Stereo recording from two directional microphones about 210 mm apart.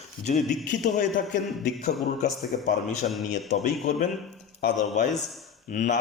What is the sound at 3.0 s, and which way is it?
Speech, 40° left (ahead or behind).